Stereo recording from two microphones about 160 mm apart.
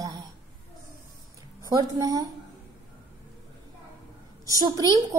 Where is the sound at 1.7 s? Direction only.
25° right (ahead or behind).